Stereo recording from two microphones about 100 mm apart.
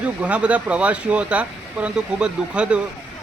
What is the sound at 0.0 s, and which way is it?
Speech, 10° right (ahead or behind).